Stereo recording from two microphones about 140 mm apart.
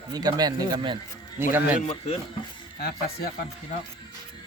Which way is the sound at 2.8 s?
90° left.